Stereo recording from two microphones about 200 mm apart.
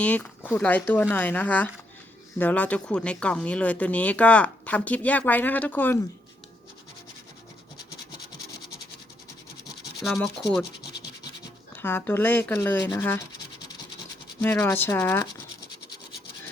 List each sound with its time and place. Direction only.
0.0 s speech: 5° left (ahead or behind)
10.0 s scratch: centre (ahead or behind)
10.9 s scratch: 55° left (ahead or behind)
11.8 s speech: 10° left (ahead or behind)
14.4 s speech: 10° left (ahead or behind)